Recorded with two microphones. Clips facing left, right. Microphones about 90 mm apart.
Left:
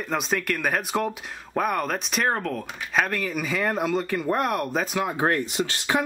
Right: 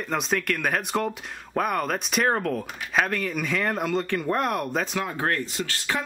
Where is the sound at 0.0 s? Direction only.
Centre (ahead or behind).